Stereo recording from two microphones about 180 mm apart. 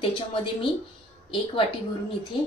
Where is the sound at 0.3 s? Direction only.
30° left (ahead or behind).